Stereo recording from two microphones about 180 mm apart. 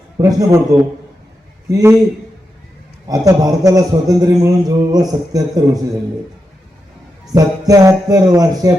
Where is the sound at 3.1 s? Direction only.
20° right (ahead or behind).